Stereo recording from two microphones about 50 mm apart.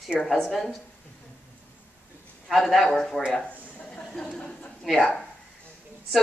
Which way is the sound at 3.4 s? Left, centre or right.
Left.